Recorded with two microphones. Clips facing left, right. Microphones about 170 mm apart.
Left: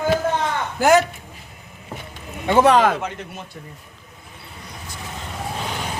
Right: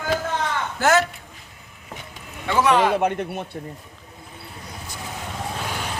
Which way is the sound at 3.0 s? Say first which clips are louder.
Right 7 dB; 55° right (ahead or behind).